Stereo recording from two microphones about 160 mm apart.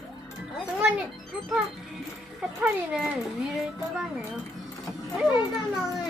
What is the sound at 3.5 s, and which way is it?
Speech, 5° right (ahead or behind).